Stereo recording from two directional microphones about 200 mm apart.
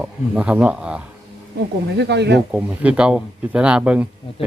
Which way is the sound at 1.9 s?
55° right (ahead or behind).